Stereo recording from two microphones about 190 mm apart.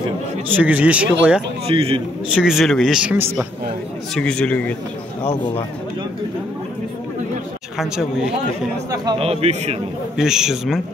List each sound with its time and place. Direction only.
0.6 s speech: 10° right (ahead or behind)
1.7 s a man's voice: 30° right (ahead or behind)
2.2 s speech: 5° right (ahead or behind)
4.1 s speech: 5° left (ahead or behind)
5.2 s a man's voice: 30° left (ahead or behind)
7.7 s speech: centre (ahead or behind)
8.9 s a man's voice: 25° right (ahead or behind)
10.1 s speech: 5° right (ahead or behind)